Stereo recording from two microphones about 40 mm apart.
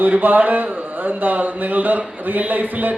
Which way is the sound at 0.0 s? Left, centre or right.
Right.